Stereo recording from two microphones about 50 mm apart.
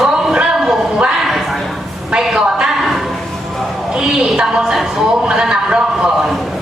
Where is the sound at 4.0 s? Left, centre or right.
Centre.